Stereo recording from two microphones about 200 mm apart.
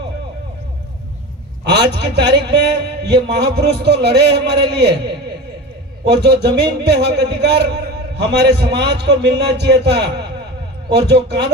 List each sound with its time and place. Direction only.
1.6 s a man's voice: 55° right (ahead or behind)
6.1 s a man's voice: 55° right (ahead or behind)